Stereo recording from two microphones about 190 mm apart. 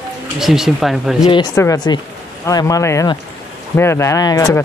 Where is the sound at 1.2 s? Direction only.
20° left (ahead or behind).